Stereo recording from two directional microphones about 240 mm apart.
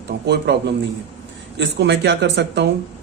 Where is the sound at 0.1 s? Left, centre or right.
Right.